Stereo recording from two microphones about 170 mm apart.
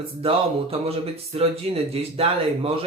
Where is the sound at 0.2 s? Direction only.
35° right (ahead or behind).